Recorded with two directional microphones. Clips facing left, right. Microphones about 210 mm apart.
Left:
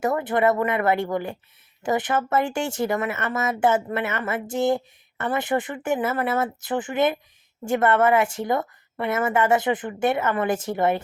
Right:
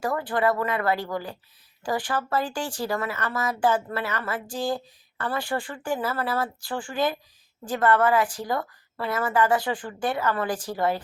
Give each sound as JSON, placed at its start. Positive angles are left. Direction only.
{"t": 0.0, "sound": "a woman's voice", "side_deg": 20}